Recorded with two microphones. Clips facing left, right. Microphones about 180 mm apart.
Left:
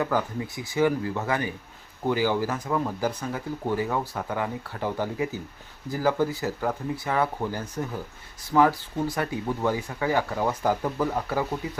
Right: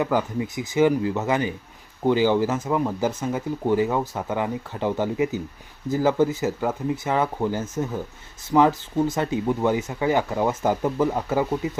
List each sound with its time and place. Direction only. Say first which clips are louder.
0.0 s speech: right 3 dB; 20° right (ahead or behind)